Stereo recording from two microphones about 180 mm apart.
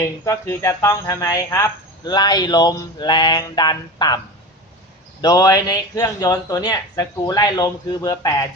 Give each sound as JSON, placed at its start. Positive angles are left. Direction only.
{"t": 0.0, "sound": "speech", "side_deg": 15}
{"t": 5.2, "sound": "speech", "side_deg": 20}